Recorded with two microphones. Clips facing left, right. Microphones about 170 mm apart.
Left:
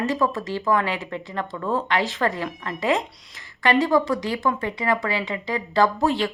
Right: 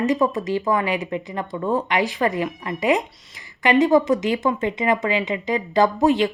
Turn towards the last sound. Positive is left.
turn(degrees=-15)  # may be behind; listen again after turning